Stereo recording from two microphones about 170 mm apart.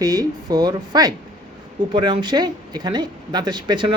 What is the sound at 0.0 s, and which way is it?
Speech, 20° right (ahead or behind).